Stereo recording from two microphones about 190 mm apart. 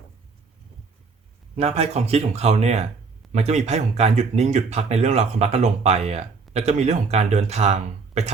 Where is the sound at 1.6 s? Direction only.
30° right (ahead or behind).